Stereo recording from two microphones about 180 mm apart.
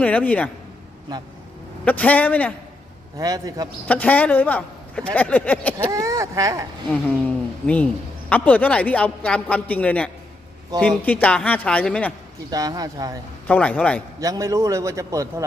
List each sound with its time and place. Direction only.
0.0 s speech: 10° left (ahead or behind)
1.8 s speech: 10° left (ahead or behind)
3.2 s speech: 20° right (ahead or behind)
3.8 s speech: 10° left (ahead or behind)
5.9 s speech: 20° right (ahead or behind)
7.3 s speech: 5° left (ahead or behind)
12.5 s speech: 20° right (ahead or behind)
13.5 s speech: 5° left (ahead or behind)
14.2 s a man's voice: 20° right (ahead or behind)